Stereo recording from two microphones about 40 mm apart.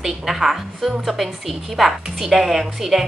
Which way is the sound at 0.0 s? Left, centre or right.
Centre.